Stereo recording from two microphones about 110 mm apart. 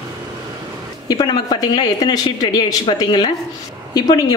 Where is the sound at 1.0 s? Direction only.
40° left (ahead or behind).